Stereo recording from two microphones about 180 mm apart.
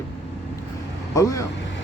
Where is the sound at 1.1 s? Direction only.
20° left (ahead or behind).